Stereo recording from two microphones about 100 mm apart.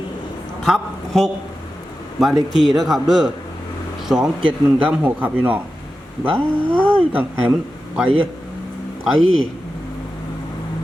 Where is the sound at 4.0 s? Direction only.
5° right (ahead or behind).